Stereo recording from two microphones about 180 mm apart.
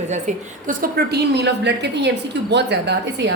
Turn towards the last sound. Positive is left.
turn(degrees=-75)  # may be behind; listen again after turning